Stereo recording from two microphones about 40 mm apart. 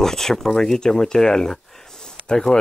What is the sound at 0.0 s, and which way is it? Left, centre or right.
Speech, centre.